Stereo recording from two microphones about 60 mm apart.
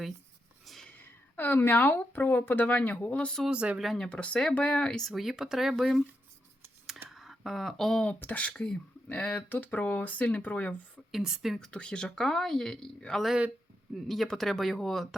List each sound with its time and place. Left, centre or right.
0.6 s a sound: centre
0.9 s speech: left
3.5 s speech: centre
3.9 s speech: centre
5.0 s speech: centre
7.1 s a sound: centre
8.2 s speech: left
9.5 s speech: left
11.1 s a woman's voice: centre
11.7 s speech: centre